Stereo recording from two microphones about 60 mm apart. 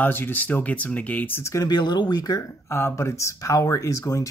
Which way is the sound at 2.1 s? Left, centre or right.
Left.